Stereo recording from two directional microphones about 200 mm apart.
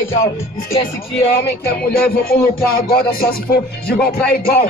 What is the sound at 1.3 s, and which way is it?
Speech, 55° left (ahead or behind).